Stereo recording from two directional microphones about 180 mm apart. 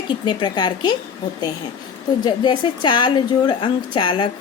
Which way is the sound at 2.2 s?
25° left (ahead or behind).